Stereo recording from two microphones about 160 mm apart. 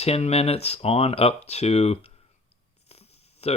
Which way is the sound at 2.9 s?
40° left (ahead or behind).